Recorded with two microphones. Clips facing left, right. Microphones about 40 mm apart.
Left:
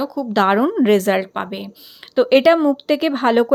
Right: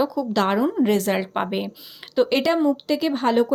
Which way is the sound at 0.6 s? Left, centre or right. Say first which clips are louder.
Left 5 dB; left.